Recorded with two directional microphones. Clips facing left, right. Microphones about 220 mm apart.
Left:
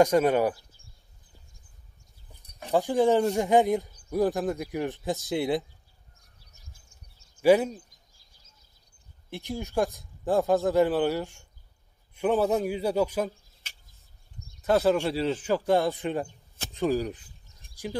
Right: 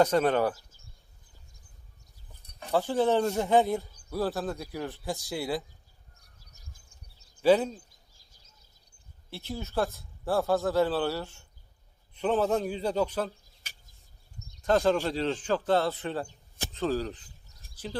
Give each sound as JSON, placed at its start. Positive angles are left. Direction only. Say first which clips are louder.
{"t": 0.0, "sound": "speech", "louder": "left 3 dB", "side_deg": 10}
{"t": 2.4, "sound": "speech", "louder": "left 2 dB", "side_deg": 15}
{"t": 7.4, "sound": "speech", "louder": "left 2 dB", "side_deg": 10}
{"t": 9.3, "sound": "speech", "louder": "left 3 dB", "side_deg": 15}
{"t": 14.6, "sound": "speech", "louder": "left 2 dB", "side_deg": 5}